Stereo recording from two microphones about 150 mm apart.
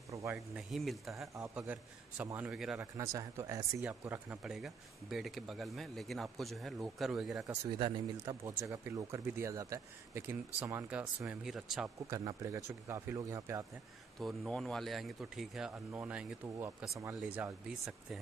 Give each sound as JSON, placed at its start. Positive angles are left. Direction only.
{"t": 0.1, "sound": "a sound", "side_deg": -20}
{"t": 0.6, "sound": "speech", "side_deg": 0}
{"t": 3.0, "sound": "speech", "side_deg": -20}
{"t": 7.8, "sound": "speech", "side_deg": -25}
{"t": 12.1, "sound": "speech", "side_deg": -20}
{"t": 14.2, "sound": "speech", "side_deg": 0}